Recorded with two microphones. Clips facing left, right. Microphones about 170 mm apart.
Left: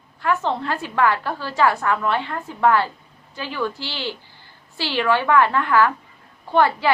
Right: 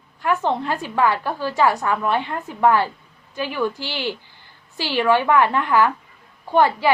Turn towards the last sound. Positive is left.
turn(degrees=-15)  # may be behind; listen again after turning